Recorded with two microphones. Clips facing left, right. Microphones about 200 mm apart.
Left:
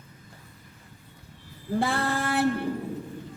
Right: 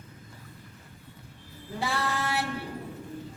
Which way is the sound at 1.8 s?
55° left (ahead or behind).